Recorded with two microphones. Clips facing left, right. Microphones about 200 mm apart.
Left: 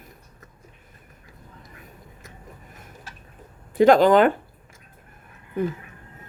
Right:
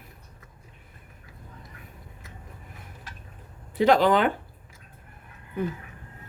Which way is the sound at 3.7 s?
50° left (ahead or behind).